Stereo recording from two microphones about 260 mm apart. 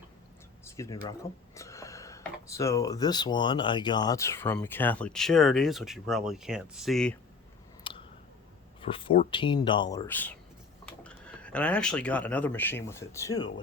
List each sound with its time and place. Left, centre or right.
1.5 s speech: centre
7.9 s clicking: centre
8.8 s speech: centre